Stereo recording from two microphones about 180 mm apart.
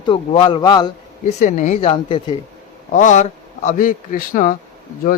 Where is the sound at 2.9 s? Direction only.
45° left (ahead or behind).